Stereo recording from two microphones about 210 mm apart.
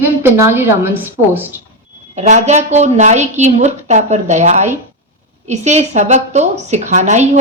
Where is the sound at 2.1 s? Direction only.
35° right (ahead or behind).